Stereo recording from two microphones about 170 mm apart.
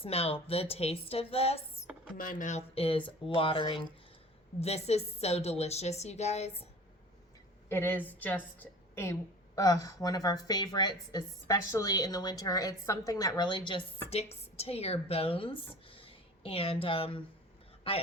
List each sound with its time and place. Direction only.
0.0 s a woman's voice: 35° left (ahead or behind)
2.1 s a woman's voice: 50° left (ahead or behind)
7.7 s a woman's voice: 15° left (ahead or behind); by 18.0 s 35° left (ahead or behind)